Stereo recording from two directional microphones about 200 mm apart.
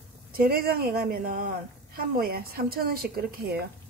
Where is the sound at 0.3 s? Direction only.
50° right (ahead or behind).